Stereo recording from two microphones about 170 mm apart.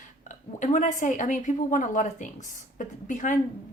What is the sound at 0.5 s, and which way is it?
Speech, 45° left (ahead or behind).